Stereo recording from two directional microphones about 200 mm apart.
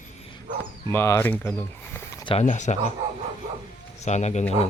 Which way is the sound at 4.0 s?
35° left (ahead or behind).